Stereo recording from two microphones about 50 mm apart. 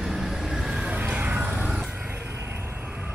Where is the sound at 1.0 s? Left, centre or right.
Right.